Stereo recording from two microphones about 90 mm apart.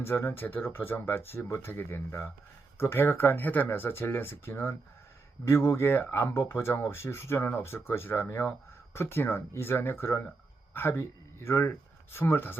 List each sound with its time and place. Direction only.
0.0 s speech: 25° left (ahead or behind)